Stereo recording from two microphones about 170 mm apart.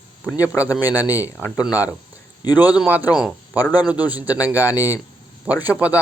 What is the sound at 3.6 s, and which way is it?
Speech, 25° left (ahead or behind).